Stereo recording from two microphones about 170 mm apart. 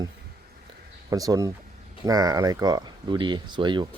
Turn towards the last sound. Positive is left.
turn(degrees=-25)  # may be behind; listen again after turning